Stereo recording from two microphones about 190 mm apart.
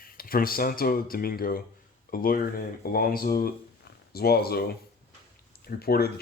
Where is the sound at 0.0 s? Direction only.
50° left (ahead or behind).